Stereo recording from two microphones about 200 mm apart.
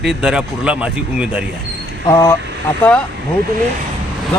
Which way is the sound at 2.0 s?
15° left (ahead or behind).